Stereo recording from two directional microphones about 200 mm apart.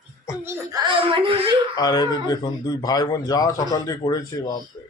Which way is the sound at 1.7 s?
20° left (ahead or behind).